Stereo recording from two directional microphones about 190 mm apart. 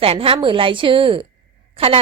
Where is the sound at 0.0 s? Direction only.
30° right (ahead or behind).